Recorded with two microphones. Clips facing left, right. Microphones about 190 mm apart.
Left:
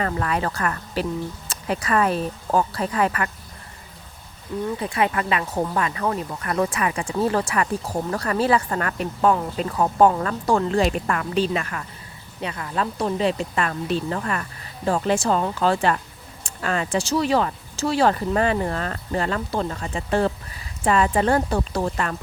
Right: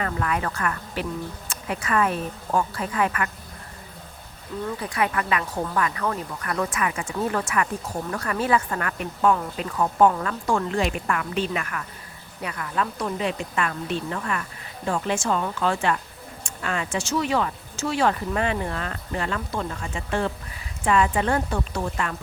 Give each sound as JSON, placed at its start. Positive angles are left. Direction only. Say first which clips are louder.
{"t": 0.0, "sound": "speech", "louder": "left 2 dB", "side_deg": 30}
{"t": 4.8, "sound": "speech", "louder": "left 2 dB", "side_deg": 25}